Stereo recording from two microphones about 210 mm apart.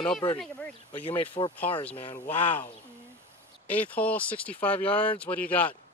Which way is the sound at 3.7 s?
5° left (ahead or behind).